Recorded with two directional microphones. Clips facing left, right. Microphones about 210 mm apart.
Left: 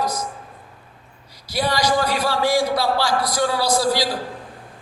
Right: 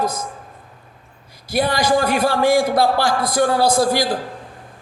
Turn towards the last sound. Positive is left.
turn(degrees=-50)  # may be behind; listen again after turning